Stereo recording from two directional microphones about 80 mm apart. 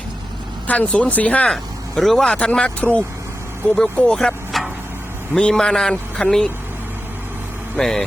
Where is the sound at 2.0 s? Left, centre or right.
Centre.